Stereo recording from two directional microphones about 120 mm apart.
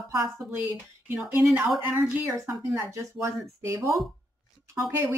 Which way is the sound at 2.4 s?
25° right (ahead or behind).